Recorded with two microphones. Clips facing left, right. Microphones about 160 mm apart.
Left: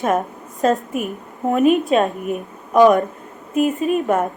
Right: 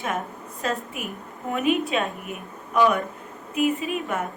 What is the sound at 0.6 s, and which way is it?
A woman's voice, 45° left (ahead or behind).